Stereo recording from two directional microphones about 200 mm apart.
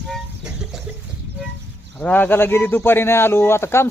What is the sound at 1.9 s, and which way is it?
Speech, 5° left (ahead or behind).